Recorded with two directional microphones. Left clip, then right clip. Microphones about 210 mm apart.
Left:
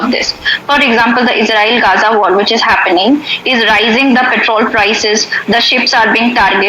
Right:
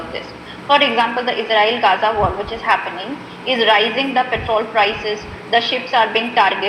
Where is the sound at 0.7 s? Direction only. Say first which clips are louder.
Left 4 dB; 50° left (ahead or behind).